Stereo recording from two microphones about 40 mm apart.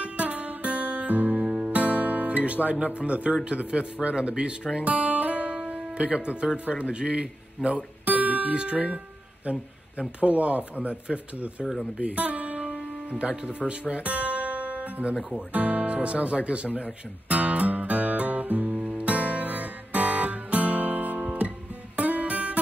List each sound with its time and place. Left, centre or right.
0.0 s music: right
1.4 s guitar: right
3.4 s speech: right
4.8 s guitar: right
5.6 s music: right
6.7 s speech: right
11.6 s speech: centre
12.0 s music: right
13.2 s speech: right
13.7 s guitar: right
15.5 s speech: right
17.3 s music: right